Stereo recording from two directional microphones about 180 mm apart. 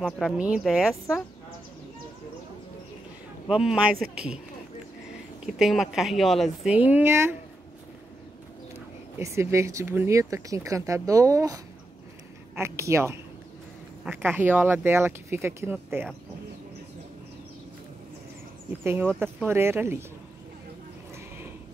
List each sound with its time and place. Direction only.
0.0 s a woman's voice: 5° right (ahead or behind)
3.4 s a woman's voice: 5° right (ahead or behind)
5.4 s a woman's voice: centre (ahead or behind)
9.2 s speech: 15° right (ahead or behind)
19.1 s speech: 10° right (ahead or behind)